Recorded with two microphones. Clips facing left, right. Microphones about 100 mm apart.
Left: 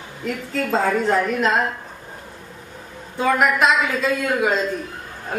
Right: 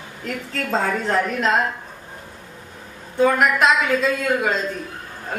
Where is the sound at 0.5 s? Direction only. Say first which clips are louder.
Left 3 dB; centre (ahead or behind).